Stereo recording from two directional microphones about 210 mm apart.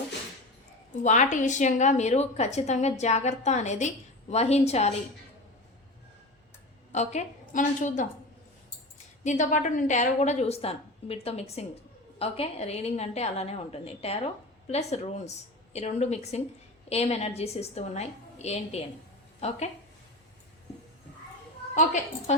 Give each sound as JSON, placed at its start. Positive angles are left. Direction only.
{"t": 1.0, "sound": "a woman's voice", "side_deg": 35}
{"t": 6.9, "sound": "a woman's voice", "side_deg": 35}
{"t": 9.2, "sound": "a woman's voice", "side_deg": 35}